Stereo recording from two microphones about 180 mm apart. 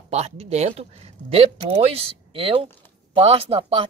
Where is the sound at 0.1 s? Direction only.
35° right (ahead or behind).